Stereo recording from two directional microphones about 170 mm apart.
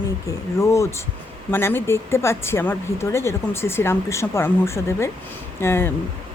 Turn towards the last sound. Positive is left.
turn(degrees=15)  # may be behind; listen again after turning